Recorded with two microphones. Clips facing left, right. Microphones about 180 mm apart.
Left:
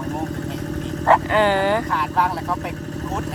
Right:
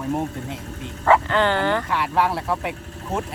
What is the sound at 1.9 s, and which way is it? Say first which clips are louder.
Speech: even; centre (ahead or behind).